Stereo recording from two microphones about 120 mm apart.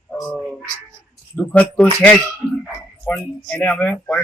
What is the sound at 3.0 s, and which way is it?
Speech, 15° left (ahead or behind).